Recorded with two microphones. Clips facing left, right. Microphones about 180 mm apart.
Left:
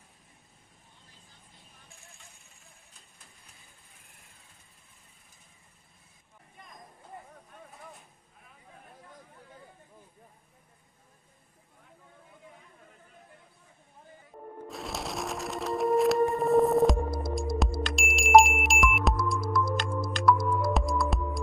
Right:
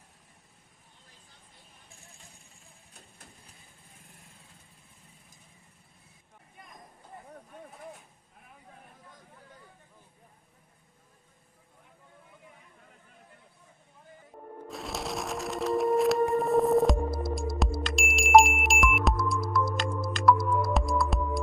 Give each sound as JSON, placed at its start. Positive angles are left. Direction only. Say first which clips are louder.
{"t": 14.7, "sound": "music", "louder": "right 2 dB", "side_deg": 0}